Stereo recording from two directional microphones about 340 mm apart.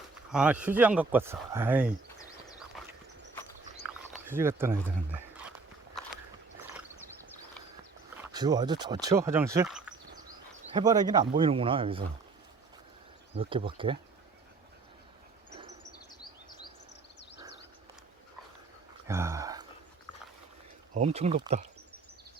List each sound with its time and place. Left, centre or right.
0.3 s speech: centre
4.3 s speech: centre
4.8 s a sound: centre
8.1 s speech: centre
13.3 s speech: centre
19.0 s a sound: centre
20.9 s speech: centre